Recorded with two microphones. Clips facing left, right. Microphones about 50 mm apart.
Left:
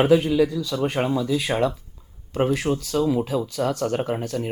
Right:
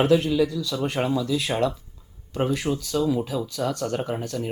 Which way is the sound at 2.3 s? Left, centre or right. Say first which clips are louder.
Left 3 dB; left.